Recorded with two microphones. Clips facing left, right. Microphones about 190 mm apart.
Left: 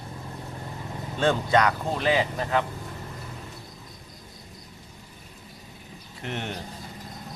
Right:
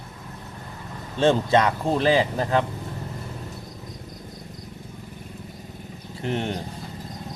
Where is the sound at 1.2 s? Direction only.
25° right (ahead or behind).